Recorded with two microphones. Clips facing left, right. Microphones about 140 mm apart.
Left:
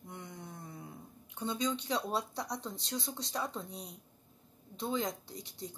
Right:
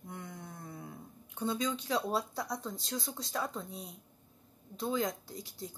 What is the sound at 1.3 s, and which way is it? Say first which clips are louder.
Speech: right 1 dB; 5° right (ahead or behind).